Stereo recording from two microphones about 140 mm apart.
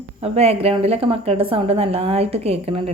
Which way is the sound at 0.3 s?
45° right (ahead or behind).